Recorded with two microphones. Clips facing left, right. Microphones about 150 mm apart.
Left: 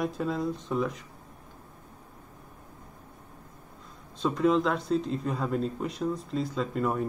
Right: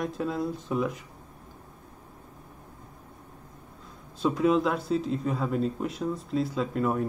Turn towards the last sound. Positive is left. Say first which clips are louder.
# right 1 dB
turn(degrees=0)  # may be behind; listen again after turning